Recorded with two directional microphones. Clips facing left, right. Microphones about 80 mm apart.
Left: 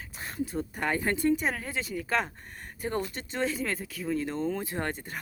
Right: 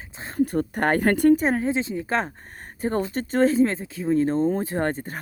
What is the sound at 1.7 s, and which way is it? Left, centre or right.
Speech, right.